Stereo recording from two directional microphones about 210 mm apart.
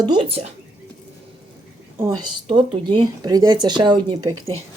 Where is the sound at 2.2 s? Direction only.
20° right (ahead or behind).